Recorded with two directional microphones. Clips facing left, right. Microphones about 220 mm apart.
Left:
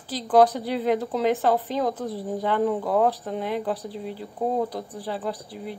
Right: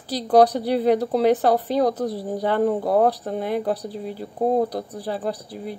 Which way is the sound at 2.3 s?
40° right (ahead or behind).